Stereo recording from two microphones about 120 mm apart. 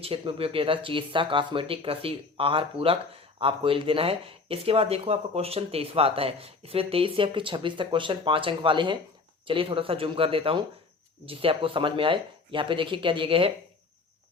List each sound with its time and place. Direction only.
0.0 s speech: 50° right (ahead or behind)